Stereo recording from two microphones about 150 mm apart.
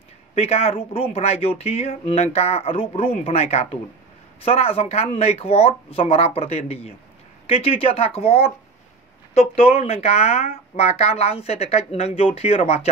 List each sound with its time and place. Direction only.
0.3 s speech: 40° left (ahead or behind)